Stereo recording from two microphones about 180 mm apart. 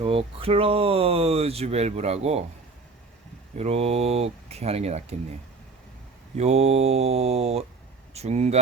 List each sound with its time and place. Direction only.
0.0 s speech: 30° right (ahead or behind)
3.6 s speech: 35° right (ahead or behind)
6.3 s speech: 40° right (ahead or behind)